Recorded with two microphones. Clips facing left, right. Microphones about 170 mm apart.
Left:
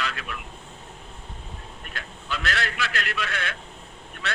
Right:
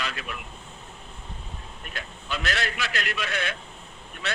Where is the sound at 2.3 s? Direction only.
20° right (ahead or behind).